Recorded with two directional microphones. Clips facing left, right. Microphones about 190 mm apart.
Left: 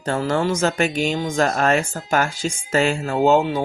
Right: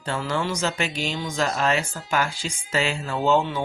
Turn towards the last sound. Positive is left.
turn(degrees=40)  # may be behind; listen again after turning